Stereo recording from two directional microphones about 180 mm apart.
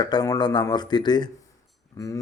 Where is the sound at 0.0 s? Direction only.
20° left (ahead or behind).